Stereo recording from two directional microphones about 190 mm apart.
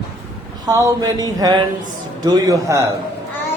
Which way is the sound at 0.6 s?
20° right (ahead or behind).